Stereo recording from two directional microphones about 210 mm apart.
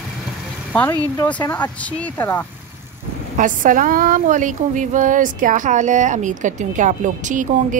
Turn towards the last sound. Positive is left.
turn(degrees=-35)  # may be behind; listen again after turning